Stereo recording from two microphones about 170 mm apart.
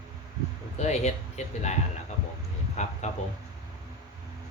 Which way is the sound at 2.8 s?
45° left (ahead or behind).